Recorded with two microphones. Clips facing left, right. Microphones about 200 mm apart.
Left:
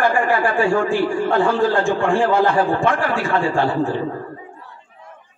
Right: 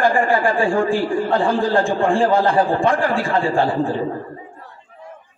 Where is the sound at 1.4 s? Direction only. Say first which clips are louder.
Even; 30° right (ahead or behind).